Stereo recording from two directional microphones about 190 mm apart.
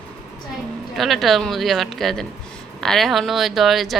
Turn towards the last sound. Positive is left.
turn(degrees=0)  # may be behind; listen again after turning